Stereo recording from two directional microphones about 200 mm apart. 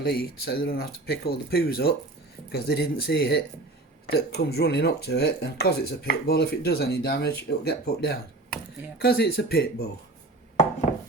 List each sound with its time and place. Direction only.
0.0 s speech: 50° left (ahead or behind)